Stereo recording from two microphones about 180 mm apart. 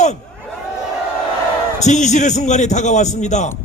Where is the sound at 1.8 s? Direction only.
40° left (ahead or behind).